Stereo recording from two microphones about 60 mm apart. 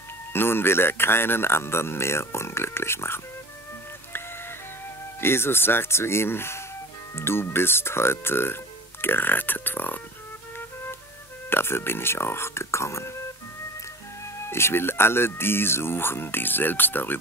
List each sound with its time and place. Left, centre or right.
0.3 s speech: left
5.2 s speech: left
11.5 s speech: left
14.5 s speech: left